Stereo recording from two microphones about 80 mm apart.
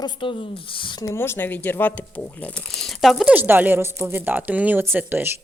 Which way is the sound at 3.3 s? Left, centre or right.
Right.